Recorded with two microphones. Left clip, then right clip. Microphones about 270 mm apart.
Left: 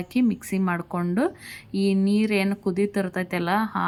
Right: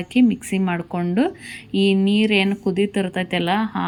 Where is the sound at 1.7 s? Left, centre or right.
Left.